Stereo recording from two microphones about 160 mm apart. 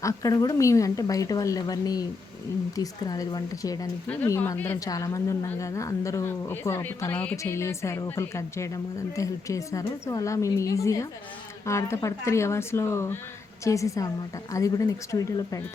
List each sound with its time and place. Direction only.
0.0 s a woman's voice: 20° left (ahead or behind)